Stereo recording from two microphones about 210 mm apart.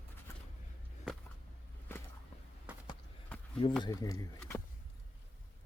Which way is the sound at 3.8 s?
15° left (ahead or behind).